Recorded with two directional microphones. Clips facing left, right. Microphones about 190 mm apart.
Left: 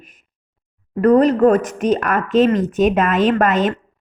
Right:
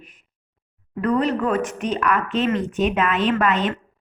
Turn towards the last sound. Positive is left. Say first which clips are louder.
# left 5 dB
turn(degrees=45)  # may be behind; listen again after turning